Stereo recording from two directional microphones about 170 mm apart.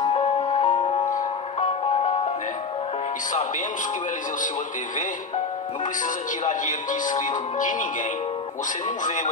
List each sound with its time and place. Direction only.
0.0 s music: 30° left (ahead or behind)
1.1 s music: 45° left (ahead or behind)
6.4 s speech: 50° left (ahead or behind)
9.0 s speech: 50° left (ahead or behind)